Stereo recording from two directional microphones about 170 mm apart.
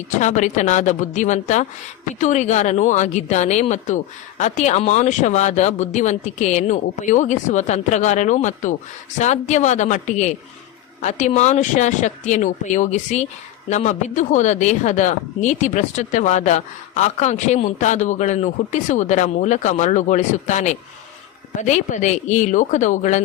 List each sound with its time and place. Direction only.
0.1 s speech: 45° left (ahead or behind)